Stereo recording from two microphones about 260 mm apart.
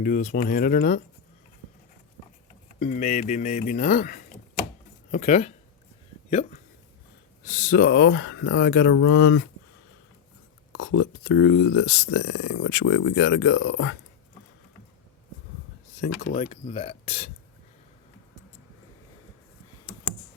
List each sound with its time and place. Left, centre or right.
0.0 s speech: left
2.7 s speech: left
7.4 s speech: left
10.7 s speech: left
16.0 s speech: left
16.3 s speech: left